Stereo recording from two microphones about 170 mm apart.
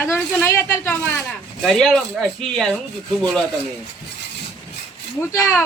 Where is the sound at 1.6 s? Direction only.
Centre (ahead or behind).